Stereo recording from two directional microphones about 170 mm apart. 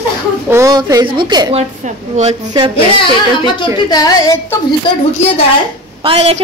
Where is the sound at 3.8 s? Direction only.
20° left (ahead or behind).